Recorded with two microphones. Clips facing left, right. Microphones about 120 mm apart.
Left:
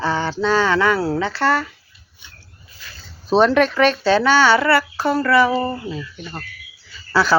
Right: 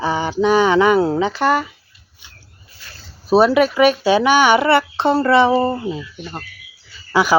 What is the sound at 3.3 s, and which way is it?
A child's voice, 10° right (ahead or behind).